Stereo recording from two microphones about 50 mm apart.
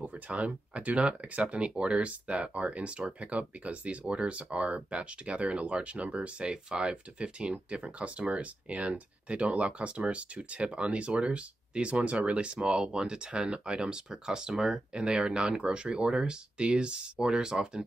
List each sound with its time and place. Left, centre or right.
0.0 s speech: right